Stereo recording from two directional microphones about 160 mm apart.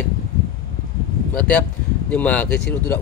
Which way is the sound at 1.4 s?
10° left (ahead or behind).